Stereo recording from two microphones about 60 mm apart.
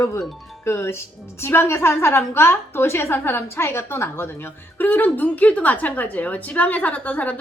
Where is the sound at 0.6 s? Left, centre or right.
Left.